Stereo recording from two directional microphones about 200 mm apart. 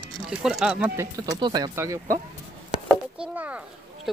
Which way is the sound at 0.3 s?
5° right (ahead or behind).